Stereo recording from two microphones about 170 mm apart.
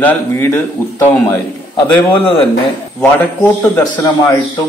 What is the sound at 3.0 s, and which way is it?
Speech, 10° left (ahead or behind).